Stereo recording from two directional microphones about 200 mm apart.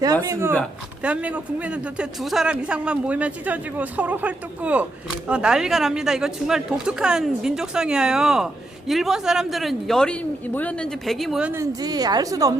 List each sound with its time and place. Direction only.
0.0 s a man's voice: 15° right (ahead or behind)